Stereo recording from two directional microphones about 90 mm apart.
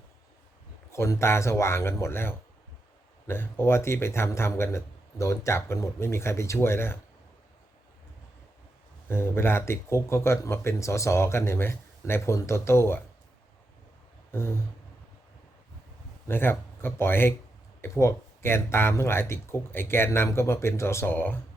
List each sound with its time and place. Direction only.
0.9 s speech: 30° left (ahead or behind)
9.0 s speech: 25° left (ahead or behind)
14.3 s a sound: 30° left (ahead or behind)
16.2 s speech: 25° left (ahead or behind)